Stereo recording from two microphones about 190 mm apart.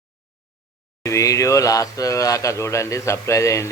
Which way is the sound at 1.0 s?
15° left (ahead or behind).